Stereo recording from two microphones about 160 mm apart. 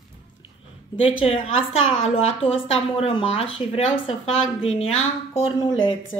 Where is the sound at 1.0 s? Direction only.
35° left (ahead or behind).